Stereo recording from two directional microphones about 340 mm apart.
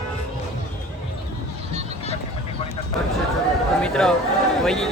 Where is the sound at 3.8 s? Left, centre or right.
Centre.